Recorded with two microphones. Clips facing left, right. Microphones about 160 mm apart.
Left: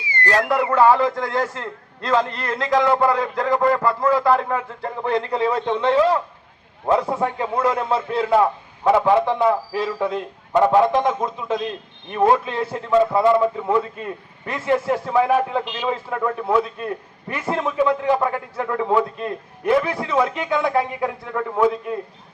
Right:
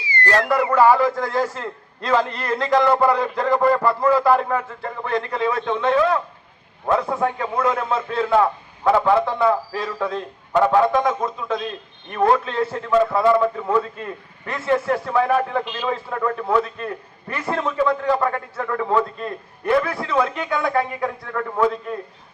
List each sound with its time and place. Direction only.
0.0 s a sound: 55° left (ahead or behind)
0.3 s a man's voice: 5° left (ahead or behind)
5.3 s a man's voice: 30° left (ahead or behind)
8.1 s a man's voice: 10° left (ahead or behind)